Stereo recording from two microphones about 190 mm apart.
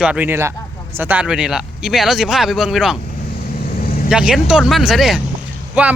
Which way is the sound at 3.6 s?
50° left (ahead or behind).